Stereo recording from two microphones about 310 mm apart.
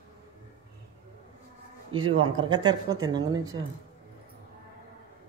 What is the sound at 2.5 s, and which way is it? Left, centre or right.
Speech, centre.